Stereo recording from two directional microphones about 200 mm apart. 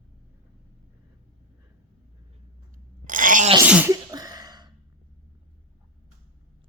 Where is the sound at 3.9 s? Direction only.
20° right (ahead or behind).